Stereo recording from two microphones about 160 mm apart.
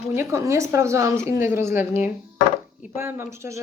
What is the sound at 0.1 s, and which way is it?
A woman's voice, 15° right (ahead or behind).